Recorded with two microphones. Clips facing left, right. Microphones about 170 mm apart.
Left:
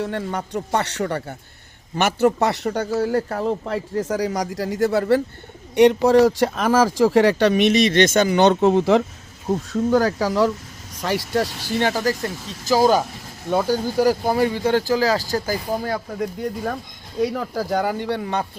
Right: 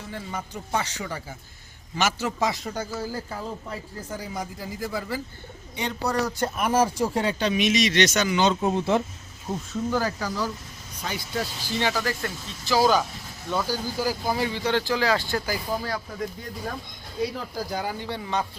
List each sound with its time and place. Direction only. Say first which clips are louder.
0.0 s speech: left 9 dB; 65° left (ahead or behind); by 9.0 s 90° left
9.7 s speech: left 8 dB; 65° left (ahead or behind); by 13.1 s 45° left (ahead or behind)
13.5 s speech: left 7 dB; 55° left (ahead or behind)
17.2 s speech: left 7 dB; 60° left (ahead or behind)